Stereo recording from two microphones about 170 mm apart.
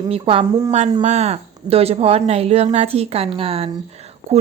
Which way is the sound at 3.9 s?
40° right (ahead or behind).